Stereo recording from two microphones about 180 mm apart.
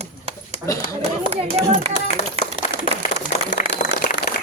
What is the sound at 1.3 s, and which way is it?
Speech, 35° right (ahead or behind).